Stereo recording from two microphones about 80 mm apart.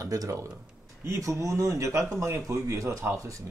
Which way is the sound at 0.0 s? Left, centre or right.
Right.